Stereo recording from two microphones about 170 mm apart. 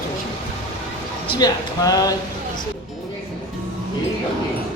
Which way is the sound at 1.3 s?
25° left (ahead or behind).